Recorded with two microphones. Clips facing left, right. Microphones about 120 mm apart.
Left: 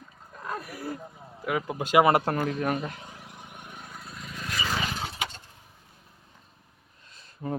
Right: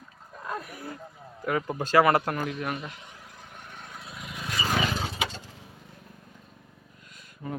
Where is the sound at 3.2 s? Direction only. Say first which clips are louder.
Left 2 dB; 20° left (ahead or behind); by 4.4 s 5° right (ahead or behind).